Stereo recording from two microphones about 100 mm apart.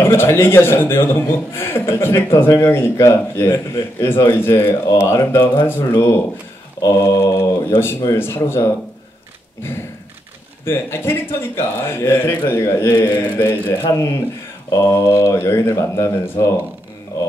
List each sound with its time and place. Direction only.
0.0 s speech: 25° left (ahead or behind)
6.8 s mantra: 35° left (ahead or behind)
8.0 s speech: 25° left (ahead or behind)
10.6 s speech: 25° left (ahead or behind)
12.9 s mantra: 35° left (ahead or behind)
13.7 s speech: 30° left (ahead or behind)